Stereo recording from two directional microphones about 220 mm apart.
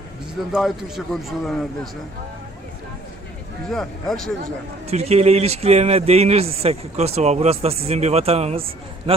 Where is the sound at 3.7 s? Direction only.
Centre (ahead or behind).